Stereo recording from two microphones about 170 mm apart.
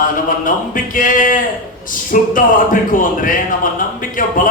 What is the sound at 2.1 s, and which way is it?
A man's voice, 50° left (ahead or behind).